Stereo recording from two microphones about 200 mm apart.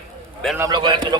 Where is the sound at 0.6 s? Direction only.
20° right (ahead or behind).